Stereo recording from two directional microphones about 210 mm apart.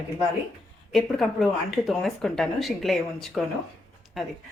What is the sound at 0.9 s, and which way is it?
Speech, centre (ahead or behind).